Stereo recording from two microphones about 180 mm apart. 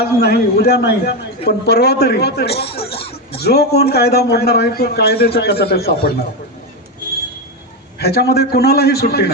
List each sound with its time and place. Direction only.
0.0 s a man's voice: 60° left (ahead or behind)
2.6 s speech: 30° left (ahead or behind)
3.3 s a man's voice: 60° left (ahead or behind)
7.9 s a man's voice: 60° left (ahead or behind)